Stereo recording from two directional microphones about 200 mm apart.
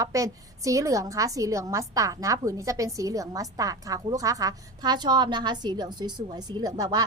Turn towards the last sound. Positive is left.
turn(degrees=-20)  # may be behind; listen again after turning